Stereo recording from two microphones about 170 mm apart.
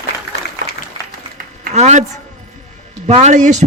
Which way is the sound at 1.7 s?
45° right (ahead or behind).